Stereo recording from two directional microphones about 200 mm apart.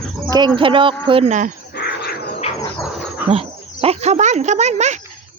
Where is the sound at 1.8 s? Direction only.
55° left (ahead or behind).